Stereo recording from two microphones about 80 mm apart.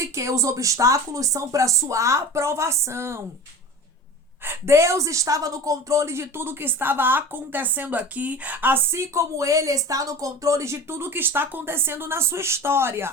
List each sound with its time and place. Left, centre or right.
0.0 s speech: right
4.4 s a woman's voice: right
8.9 s speech: right